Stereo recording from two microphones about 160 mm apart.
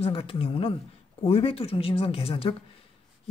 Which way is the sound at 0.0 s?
35° left (ahead or behind).